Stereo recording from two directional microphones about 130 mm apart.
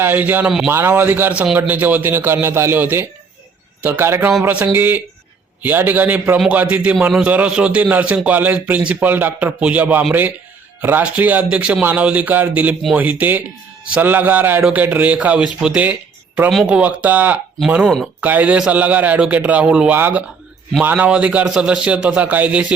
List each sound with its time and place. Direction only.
0.0 s a man's voice: 15° right (ahead or behind)